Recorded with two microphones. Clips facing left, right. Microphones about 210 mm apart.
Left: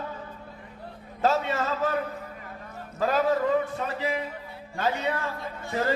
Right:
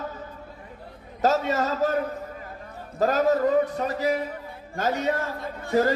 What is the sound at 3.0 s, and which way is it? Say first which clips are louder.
A man's voice: right 3 dB; 45° right (ahead or behind).